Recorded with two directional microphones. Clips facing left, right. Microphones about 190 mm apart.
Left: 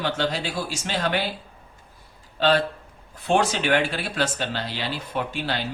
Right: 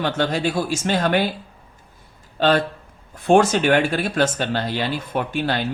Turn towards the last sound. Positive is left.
turn(degrees=-50)  # may be behind; listen again after turning